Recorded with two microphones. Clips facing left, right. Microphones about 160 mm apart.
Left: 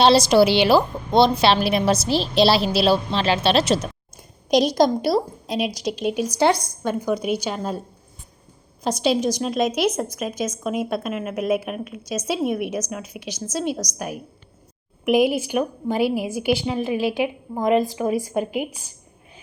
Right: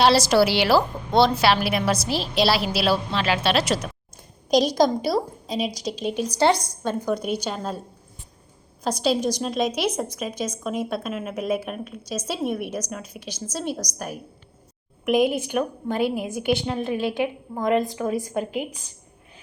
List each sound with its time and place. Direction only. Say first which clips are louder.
0.0 s a woman's voice: left 3 dB; 20° left (ahead or behind)
4.2 s a sound: left 1 dB; 5° left (ahead or behind)
5.0 s a woman's voice: left 3 dB; 10° left (ahead or behind)
9.0 s a woman's voice: left 2 dB; 5° left (ahead or behind)
15.0 s a woman's voice: left 2 dB; 5° left (ahead or behind)